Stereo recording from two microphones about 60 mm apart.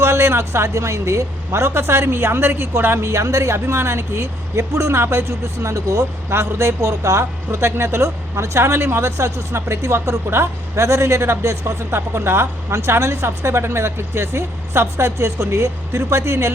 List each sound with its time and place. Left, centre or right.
0.0 s a woman's voice: right
3.1 s speech: right
6.3 s a woman's voice: right
7.0 s a woman's voice: right